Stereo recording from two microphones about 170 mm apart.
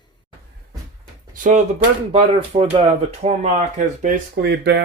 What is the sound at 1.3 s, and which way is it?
Speech, 50° right (ahead or behind).